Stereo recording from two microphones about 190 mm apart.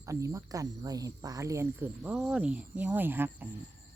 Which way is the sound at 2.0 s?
Centre (ahead or behind).